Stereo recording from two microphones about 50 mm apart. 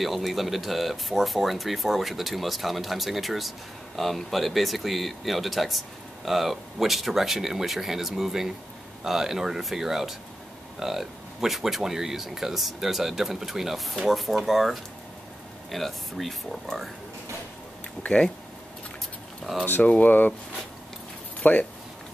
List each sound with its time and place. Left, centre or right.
0.0 s speech: centre
18.0 s speech: left
19.6 s speech: left
21.4 s speech: left